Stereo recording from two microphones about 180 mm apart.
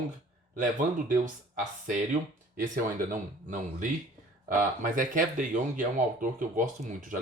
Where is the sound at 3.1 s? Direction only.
45° right (ahead or behind).